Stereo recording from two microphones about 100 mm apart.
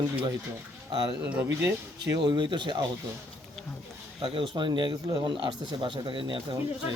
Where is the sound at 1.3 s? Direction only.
20° right (ahead or behind).